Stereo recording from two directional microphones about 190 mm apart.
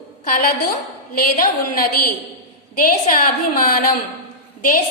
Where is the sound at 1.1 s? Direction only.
50° left (ahead or behind).